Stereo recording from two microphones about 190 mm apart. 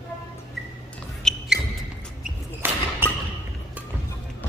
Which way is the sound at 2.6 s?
10° right (ahead or behind).